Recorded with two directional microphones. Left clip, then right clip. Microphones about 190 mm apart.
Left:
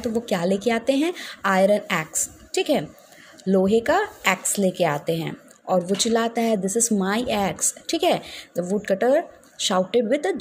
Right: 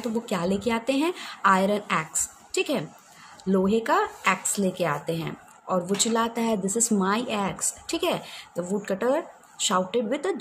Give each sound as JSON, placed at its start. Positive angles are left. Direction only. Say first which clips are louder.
{"t": 0.0, "sound": "a woman's voice", "louder": "left 4 dB", "side_deg": 15}